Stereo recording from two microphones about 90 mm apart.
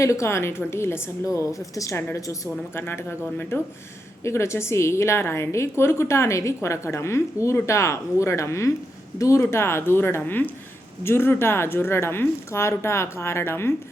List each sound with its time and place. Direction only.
0.0 s a woman's voice: 35° left (ahead or behind)
2.8 s a woman's voice: 25° left (ahead or behind)